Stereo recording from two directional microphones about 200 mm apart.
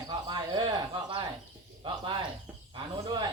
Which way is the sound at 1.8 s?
25° right (ahead or behind).